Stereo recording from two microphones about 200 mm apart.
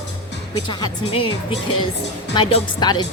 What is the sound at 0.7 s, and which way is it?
Speech, 20° left (ahead or behind).